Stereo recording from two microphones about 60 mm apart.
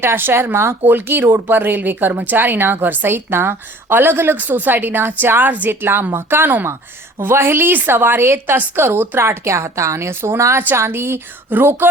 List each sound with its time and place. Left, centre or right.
0.0 s a woman's voice: right